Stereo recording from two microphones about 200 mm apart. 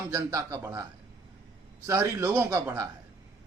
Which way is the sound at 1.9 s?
15° right (ahead or behind).